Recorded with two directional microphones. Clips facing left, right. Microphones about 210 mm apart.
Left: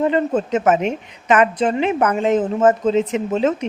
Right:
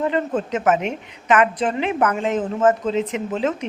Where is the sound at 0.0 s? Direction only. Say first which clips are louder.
Left 4 dB; 25° left (ahead or behind).